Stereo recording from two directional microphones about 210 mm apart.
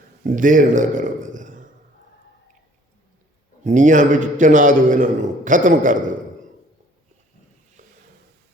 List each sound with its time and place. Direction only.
0.3 s a man's voice: 40° right (ahead or behind)
3.6 s a man's voice: 35° right (ahead or behind)
7.8 s a sound: 40° right (ahead or behind)